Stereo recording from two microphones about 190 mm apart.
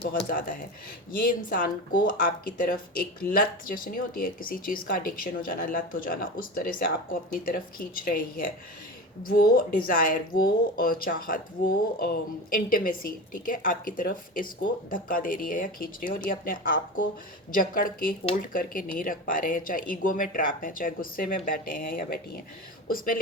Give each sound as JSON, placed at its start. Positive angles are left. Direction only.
{"t": 0.0, "sound": "speech", "side_deg": 55}